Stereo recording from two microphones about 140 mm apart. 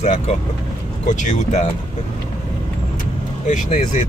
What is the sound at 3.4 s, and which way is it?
Speech, 60° left (ahead or behind).